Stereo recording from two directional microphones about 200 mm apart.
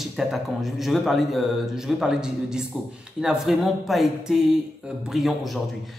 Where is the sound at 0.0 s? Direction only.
Centre (ahead or behind).